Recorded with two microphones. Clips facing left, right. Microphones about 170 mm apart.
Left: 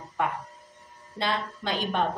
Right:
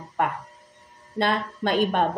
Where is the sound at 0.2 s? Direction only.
50° right (ahead or behind).